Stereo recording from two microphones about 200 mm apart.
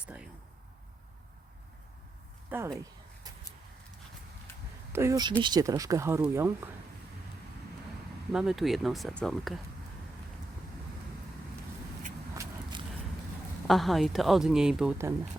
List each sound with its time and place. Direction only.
0.0 s a sound: 5° right (ahead or behind)
2.5 s speech: 10° right (ahead or behind)
4.9 s speech: 15° right (ahead or behind)
8.3 s a woman's voice: centre (ahead or behind)
13.7 s a woman's voice: centre (ahead or behind)